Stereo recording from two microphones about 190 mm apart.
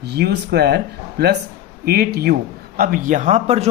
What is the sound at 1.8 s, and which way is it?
A man's voice, 55° right (ahead or behind).